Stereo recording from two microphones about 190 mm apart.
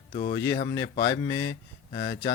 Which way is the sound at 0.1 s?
45° left (ahead or behind).